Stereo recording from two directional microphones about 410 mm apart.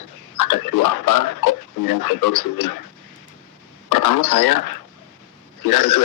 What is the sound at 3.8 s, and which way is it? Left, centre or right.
Speech, left.